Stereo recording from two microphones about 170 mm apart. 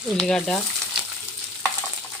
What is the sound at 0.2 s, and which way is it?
Speech, 5° left (ahead or behind).